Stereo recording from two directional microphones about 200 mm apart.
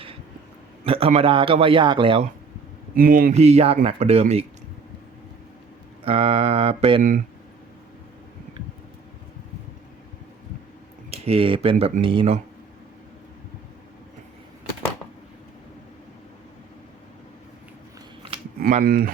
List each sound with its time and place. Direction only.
0.9 s a man's voice: 30° right (ahead or behind)
2.9 s speech: 45° right (ahead or behind)
6.1 s a man's voice: 30° right (ahead or behind)
11.1 s a man's voice: 30° right (ahead or behind)
18.6 s speech: 45° right (ahead or behind)